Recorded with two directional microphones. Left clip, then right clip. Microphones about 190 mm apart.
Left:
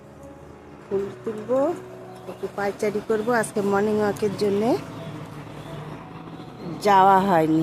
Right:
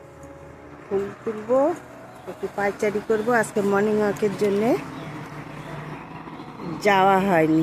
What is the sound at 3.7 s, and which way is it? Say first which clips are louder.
Speech: left 1 dB; 5° right (ahead or behind).